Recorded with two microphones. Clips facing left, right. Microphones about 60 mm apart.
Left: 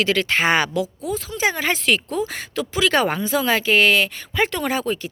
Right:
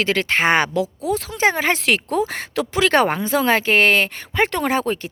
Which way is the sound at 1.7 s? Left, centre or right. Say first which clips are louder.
Right 2 dB; right.